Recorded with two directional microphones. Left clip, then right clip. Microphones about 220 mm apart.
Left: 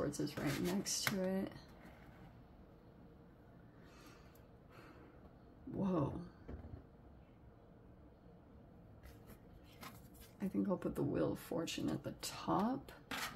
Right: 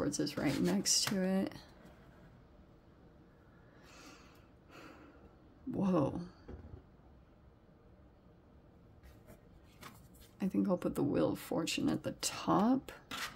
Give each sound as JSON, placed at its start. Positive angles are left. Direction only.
{"t": 0.0, "sound": "speech", "side_deg": -50}
{"t": 5.8, "sound": "speech", "side_deg": -45}
{"t": 10.4, "sound": "speech", "side_deg": -45}